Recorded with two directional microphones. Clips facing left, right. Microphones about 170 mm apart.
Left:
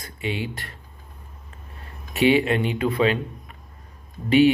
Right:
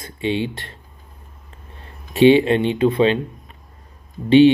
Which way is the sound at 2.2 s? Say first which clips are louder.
Right 6 dB; 25° right (ahead or behind).